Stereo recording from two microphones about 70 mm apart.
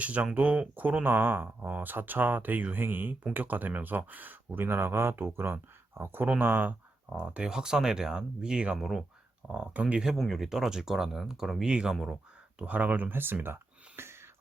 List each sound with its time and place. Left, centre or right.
0.0 s speech: centre
7.1 s speech: centre
9.5 s speech: centre; by 14.2 s right